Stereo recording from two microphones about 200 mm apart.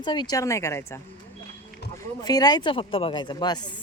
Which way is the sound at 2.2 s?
20° left (ahead or behind).